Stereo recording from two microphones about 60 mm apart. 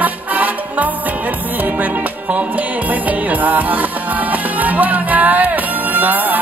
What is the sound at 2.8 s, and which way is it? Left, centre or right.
Music, right.